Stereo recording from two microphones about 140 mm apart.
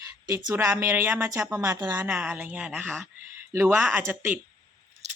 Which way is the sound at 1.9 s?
10° right (ahead or behind).